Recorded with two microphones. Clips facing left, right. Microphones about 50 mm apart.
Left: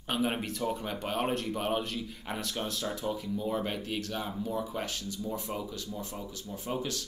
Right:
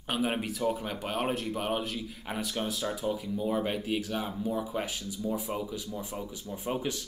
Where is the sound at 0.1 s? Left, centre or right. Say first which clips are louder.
Right 1 dB; centre.